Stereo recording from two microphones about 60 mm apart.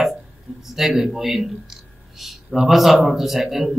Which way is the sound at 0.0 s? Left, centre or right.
Centre.